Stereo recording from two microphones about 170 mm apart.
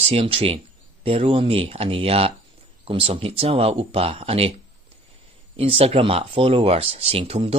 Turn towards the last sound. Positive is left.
turn(degrees=-35)  # may be behind; listen again after turning